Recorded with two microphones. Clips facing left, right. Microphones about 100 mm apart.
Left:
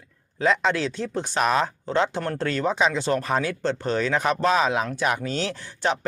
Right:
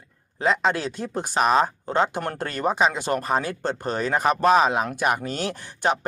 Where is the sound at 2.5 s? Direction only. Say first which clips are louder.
Right 1 dB; 50° right (ahead or behind).